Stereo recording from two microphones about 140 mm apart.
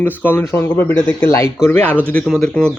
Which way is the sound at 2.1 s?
Centre (ahead or behind).